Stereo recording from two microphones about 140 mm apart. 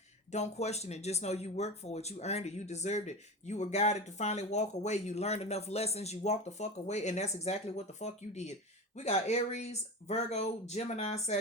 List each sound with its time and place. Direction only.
0.3 s speech: 55° left (ahead or behind)